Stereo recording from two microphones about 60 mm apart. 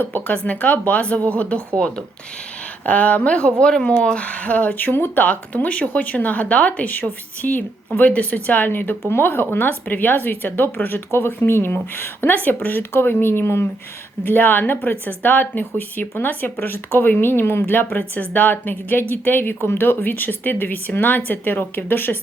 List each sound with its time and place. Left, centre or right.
0.0 s speech: left
2.8 s speech: left
5.2 s speech: left
14.3 s speech: left